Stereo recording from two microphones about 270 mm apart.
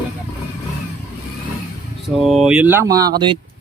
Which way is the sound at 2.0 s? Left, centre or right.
Centre.